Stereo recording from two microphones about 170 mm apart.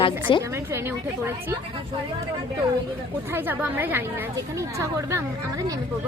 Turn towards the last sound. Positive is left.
turn(degrees=-15)  # may be behind; listen again after turning